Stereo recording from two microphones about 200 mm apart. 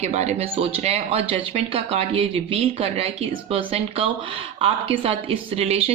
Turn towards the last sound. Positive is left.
turn(degrees=-30)  # may be behind; listen again after turning